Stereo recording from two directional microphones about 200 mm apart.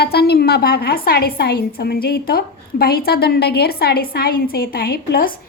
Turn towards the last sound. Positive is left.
turn(degrees=50)  # may be behind; listen again after turning